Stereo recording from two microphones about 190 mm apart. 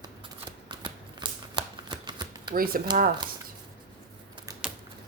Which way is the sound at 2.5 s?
50° right (ahead or behind).